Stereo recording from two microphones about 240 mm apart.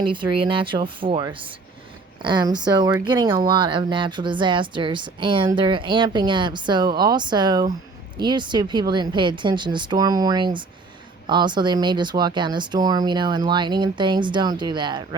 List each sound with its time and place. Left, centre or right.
0.0 s a woman's voice: right